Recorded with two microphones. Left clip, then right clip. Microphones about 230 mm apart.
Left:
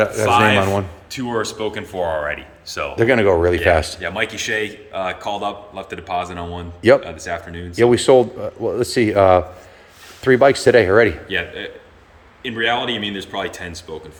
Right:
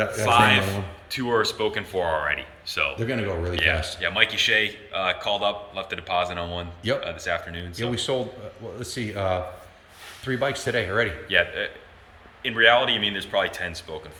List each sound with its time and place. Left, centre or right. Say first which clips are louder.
0.3 s a man's voice: left 3 dB; centre
3.0 s a man's voice: left 14 dB; centre
11.3 s a man's voice: right 1 dB; centre